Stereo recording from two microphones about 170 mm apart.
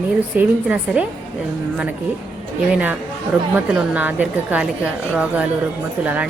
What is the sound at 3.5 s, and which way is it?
A woman's voice, 10° right (ahead or behind).